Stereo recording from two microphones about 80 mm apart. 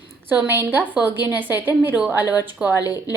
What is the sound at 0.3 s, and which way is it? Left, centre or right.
A woman's voice, right.